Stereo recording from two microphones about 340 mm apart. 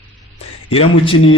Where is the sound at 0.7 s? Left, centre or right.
Centre.